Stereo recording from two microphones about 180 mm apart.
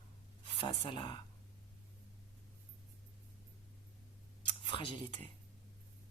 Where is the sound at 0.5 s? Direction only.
25° left (ahead or behind).